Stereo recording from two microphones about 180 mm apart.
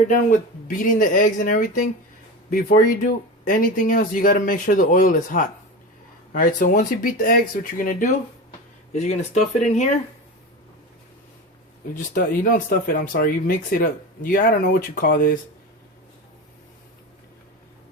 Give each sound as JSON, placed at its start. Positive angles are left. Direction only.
{"t": 0.1, "sound": "speech", "side_deg": 45}
{"t": 11.9, "sound": "speech", "side_deg": 50}